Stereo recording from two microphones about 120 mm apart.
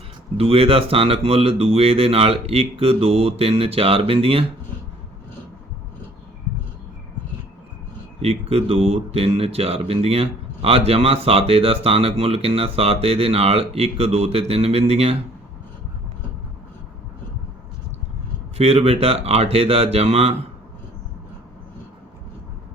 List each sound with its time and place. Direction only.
0.3 s speech: 55° right (ahead or behind)
8.2 s speech: 60° right (ahead or behind)
18.5 s speech: 55° right (ahead or behind)